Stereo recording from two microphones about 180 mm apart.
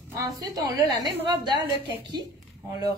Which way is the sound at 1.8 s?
25° right (ahead or behind).